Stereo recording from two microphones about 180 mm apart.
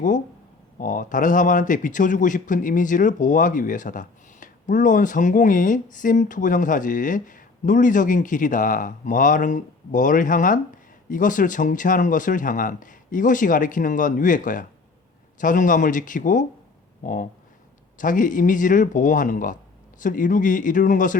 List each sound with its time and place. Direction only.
0.8 s speech: 50° left (ahead or behind)